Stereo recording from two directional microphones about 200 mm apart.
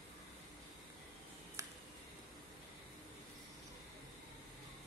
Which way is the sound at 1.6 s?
15° right (ahead or behind).